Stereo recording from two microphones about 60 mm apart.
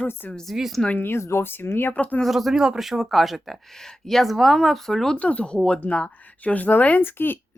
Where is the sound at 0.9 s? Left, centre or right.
Left.